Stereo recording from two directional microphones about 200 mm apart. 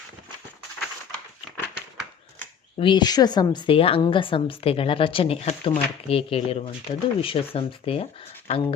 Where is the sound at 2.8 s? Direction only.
25° left (ahead or behind).